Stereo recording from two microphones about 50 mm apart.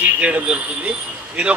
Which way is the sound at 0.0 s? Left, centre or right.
Right.